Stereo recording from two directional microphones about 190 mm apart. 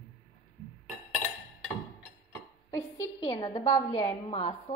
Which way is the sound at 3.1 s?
25° left (ahead or behind).